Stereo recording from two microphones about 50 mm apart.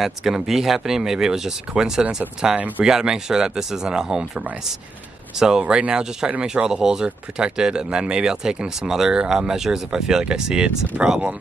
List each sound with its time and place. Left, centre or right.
0.0 s speech: centre
5.4 s speech: centre